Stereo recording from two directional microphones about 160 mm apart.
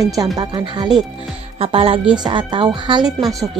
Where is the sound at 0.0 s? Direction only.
20° right (ahead or behind).